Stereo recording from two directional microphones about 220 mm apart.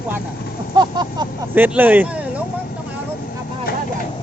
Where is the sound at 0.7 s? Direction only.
20° right (ahead or behind).